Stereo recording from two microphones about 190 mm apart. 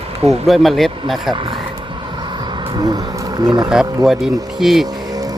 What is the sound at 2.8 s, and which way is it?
Speech, 20° right (ahead or behind).